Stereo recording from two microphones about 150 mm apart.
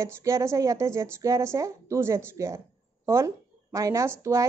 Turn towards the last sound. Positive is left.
turn(degrees=-20)  # may be behind; listen again after turning